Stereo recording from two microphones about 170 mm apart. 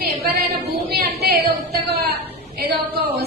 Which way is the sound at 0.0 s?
65° right (ahead or behind).